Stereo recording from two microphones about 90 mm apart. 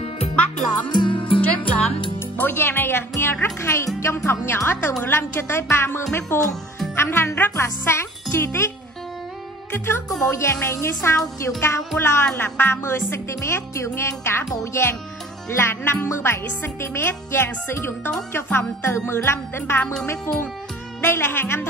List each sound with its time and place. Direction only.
0.8 s music: 60° left (ahead or behind)
1.4 s music: 15° left (ahead or behind)
3.6 s speech: 30° left (ahead or behind)
9.7 s a child's voice: 25° left (ahead or behind)
21.0 s speech: 25° left (ahead or behind)